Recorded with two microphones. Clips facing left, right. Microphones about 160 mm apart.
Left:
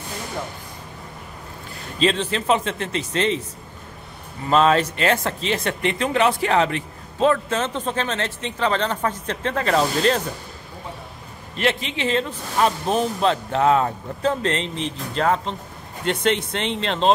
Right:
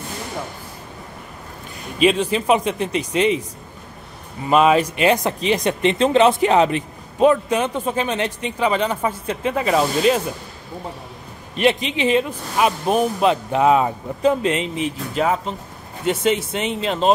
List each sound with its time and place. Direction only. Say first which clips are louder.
2.0 s speech: right 4 dB; 10° right (ahead or behind)
4.5 s speech: right 2 dB; 10° right (ahead or behind)
11.5 s speech: right 5 dB; 15° right (ahead or behind)